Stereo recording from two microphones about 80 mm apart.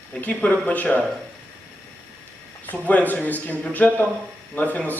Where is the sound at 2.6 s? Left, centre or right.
Left.